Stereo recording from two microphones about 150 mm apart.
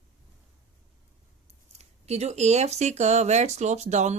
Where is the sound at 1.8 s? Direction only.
45° right (ahead or behind).